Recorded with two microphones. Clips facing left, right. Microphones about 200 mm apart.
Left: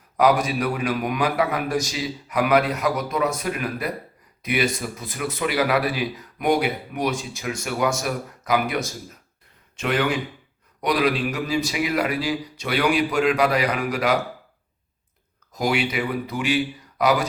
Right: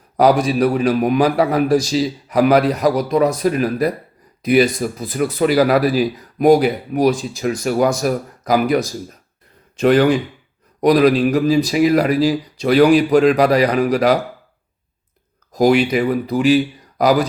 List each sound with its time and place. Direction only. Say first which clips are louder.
0.2 s speech: right 6 dB; 35° right (ahead or behind)
15.5 s speech: right 10 dB; 40° right (ahead or behind)